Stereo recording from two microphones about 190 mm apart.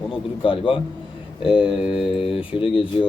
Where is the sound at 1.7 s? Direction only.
5° right (ahead or behind).